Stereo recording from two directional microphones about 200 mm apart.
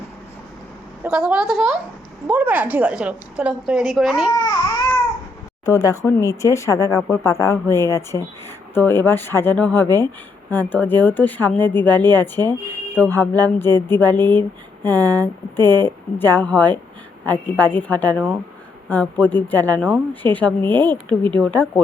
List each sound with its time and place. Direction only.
1.0 s a woman's voice: 5° right (ahead or behind)
5.6 s a woman's voice: 15° left (ahead or behind)